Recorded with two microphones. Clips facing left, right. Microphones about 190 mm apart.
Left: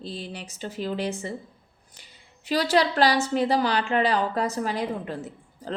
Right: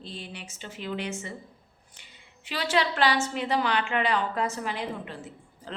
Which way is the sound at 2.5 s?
40° left (ahead or behind).